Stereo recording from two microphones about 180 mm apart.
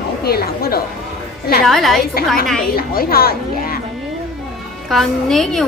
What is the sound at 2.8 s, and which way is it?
Speech, 55° left (ahead or behind).